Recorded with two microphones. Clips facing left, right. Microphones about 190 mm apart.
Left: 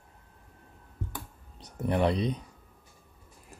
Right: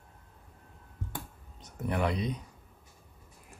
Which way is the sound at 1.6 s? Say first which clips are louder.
Left 4 dB; 30° left (ahead or behind).